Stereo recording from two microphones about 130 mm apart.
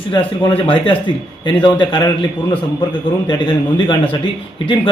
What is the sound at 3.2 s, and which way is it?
Speech, 35° left (ahead or behind).